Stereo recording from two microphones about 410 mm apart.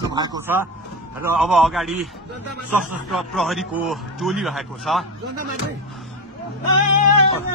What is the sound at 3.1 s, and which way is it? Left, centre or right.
Speech, centre.